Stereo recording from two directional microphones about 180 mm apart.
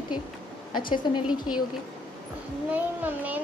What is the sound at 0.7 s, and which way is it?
Speech, 25° left (ahead or behind).